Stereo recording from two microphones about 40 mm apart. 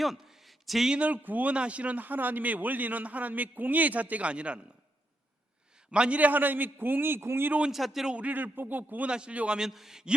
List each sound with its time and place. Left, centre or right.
0.0 s a sound: centre
0.9 s a man's voice: right
1.5 s speech: right
2.0 s a man's voice: right
4.3 s a man's voice: right
5.9 s a man's voice: right
6.1 s a man's voice: right
7.7 s a man's voice: centre
8.3 s a man's voice: right
9.0 s a man's voice: right
9.6 s a man's voice: centre